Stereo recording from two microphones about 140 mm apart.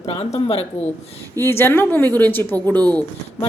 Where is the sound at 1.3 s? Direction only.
15° left (ahead or behind).